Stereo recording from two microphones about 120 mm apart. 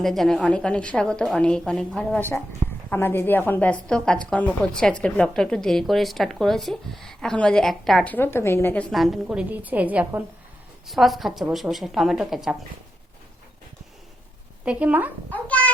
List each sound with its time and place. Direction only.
0.0 s a woman's voice: centre (ahead or behind)
2.1 s a woman's voice: 15° left (ahead or behind); by 8.0 s centre (ahead or behind)
8.0 s a woman's voice: 15° left (ahead or behind)
8.9 s a woman's voice: centre (ahead or behind)
9.2 s a woman's voice: 10° right (ahead or behind)
10.8 s a woman's voice: centre (ahead or behind)
14.6 s a woman's voice: 10° right (ahead or behind)
15.3 s a child's voice: 10° left (ahead or behind)